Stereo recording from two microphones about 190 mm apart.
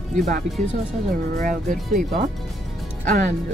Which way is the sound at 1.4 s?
45° right (ahead or behind).